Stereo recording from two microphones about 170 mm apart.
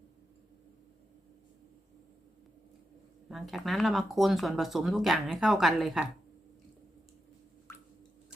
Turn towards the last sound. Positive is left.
turn(degrees=20)  # may be behind; listen again after turning